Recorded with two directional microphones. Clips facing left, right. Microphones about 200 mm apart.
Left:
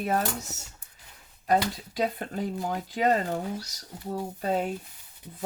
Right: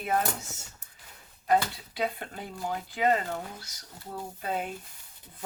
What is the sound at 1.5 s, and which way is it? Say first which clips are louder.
Speech: left 1 dB; 40° left (ahead or behind).